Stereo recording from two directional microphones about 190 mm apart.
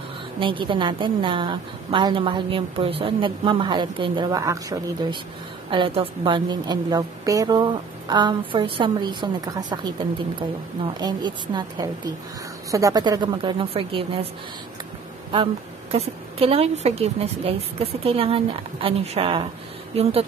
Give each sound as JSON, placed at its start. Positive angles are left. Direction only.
{"t": 0.4, "sound": "a woman's voice", "side_deg": -25}
{"t": 11.0, "sound": "a woman's voice", "side_deg": -20}
{"t": 15.9, "sound": "a woman's voice", "side_deg": -30}